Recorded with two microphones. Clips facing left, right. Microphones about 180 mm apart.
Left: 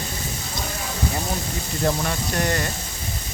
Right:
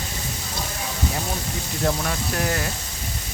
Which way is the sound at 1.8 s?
Centre (ahead or behind).